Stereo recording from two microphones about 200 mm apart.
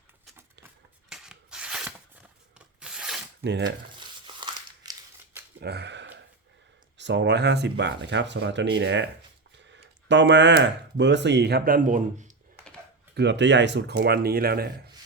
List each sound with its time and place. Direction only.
1.1 s rub: 5° right (ahead or behind)
3.4 s speech: 60° right (ahead or behind)
4.0 s crumpling: 20° right (ahead or behind)
5.5 s a sound: 55° right (ahead or behind)
7.0 s speech: 60° right (ahead or behind)
10.1 s speech: 60° right (ahead or behind); by 12.3 s 40° right (ahead or behind)
13.1 s speech: 60° right (ahead or behind)